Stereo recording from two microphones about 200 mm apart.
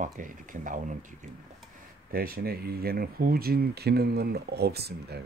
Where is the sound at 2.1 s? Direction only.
50° right (ahead or behind).